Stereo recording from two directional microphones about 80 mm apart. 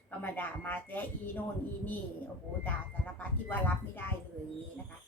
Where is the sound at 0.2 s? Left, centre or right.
Left.